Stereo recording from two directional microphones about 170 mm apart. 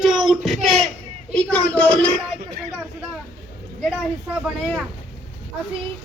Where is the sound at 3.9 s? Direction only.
5° right (ahead or behind).